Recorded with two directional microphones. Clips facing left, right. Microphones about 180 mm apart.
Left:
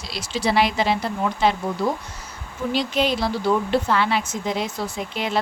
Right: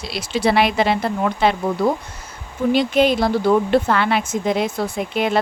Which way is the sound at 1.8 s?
50° right (ahead or behind).